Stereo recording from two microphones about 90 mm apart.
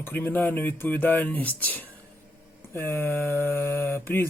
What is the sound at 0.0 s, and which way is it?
Speech, 20° left (ahead or behind).